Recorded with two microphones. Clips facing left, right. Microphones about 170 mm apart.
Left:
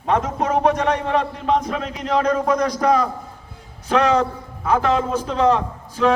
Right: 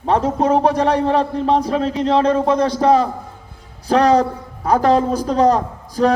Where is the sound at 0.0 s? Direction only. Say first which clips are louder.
Right 4 dB; 30° right (ahead or behind).